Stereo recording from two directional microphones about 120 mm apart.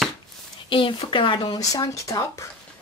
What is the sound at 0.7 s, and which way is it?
Speech, 45° left (ahead or behind).